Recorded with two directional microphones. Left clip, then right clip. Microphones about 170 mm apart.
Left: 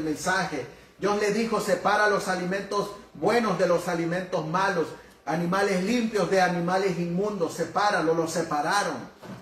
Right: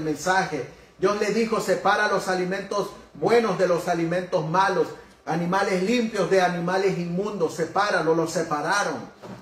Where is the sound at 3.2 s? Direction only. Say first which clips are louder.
Right 3 dB; 40° right (ahead or behind).